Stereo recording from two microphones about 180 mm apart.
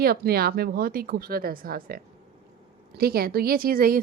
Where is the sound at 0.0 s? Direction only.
60° right (ahead or behind).